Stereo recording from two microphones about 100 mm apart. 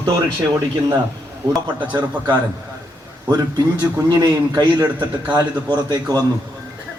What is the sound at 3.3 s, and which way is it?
A man's voice, 45° right (ahead or behind).